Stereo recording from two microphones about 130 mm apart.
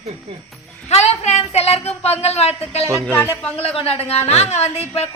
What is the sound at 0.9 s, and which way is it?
A woman's voice, 55° left (ahead or behind).